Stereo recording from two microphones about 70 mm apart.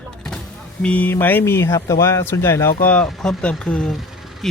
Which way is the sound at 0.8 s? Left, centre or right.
Left.